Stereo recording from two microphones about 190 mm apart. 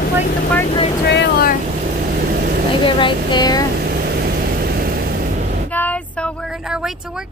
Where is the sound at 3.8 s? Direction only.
55° right (ahead or behind).